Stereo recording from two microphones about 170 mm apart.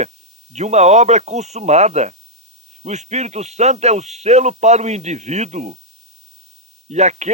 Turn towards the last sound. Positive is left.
turn(degrees=-45)  # may be behind; listen again after turning